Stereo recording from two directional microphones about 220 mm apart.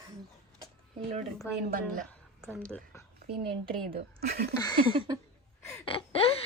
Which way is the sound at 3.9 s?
45° right (ahead or behind).